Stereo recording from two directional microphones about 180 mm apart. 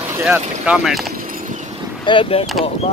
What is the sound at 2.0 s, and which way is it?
Speech, 25° left (ahead or behind).